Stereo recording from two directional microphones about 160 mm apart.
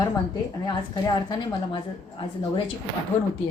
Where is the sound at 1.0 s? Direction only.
25° left (ahead or behind).